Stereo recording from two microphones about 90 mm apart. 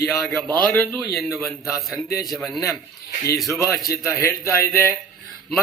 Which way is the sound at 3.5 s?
30° left (ahead or behind).